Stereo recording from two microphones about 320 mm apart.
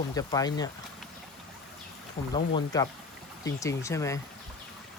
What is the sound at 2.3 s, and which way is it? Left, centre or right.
Speech, centre.